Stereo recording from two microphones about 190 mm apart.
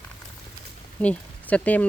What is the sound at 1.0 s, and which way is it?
Speech, 5° left (ahead or behind).